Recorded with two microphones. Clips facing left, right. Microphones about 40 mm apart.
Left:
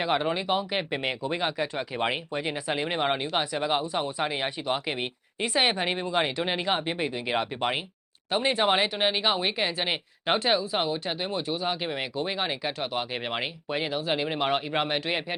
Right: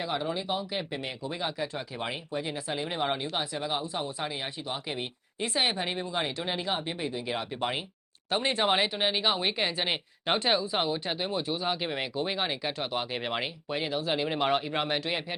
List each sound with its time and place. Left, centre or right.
0.0 s speech: left
8.3 s speech: centre